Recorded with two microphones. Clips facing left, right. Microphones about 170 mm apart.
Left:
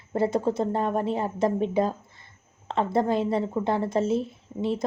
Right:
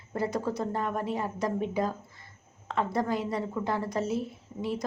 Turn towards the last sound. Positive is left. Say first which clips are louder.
# left 5 dB
turn(degrees=25)  # may be behind; listen again after turning